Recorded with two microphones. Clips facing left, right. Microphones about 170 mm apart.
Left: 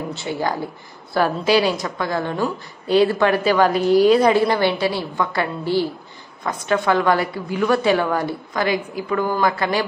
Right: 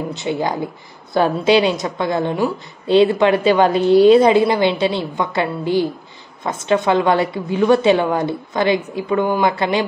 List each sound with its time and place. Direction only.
0.1 s a woman's voice: 20° right (ahead or behind)